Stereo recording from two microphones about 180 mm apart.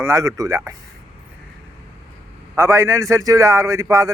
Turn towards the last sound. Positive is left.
turn(degrees=-15)  # may be behind; listen again after turning